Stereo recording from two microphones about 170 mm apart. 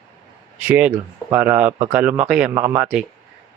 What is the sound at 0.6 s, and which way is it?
Speech, 10° right (ahead or behind).